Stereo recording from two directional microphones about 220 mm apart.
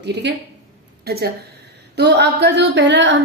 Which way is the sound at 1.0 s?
45° right (ahead or behind).